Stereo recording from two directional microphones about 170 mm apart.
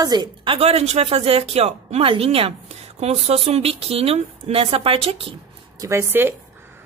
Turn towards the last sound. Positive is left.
turn(degrees=-10)  # may be behind; listen again after turning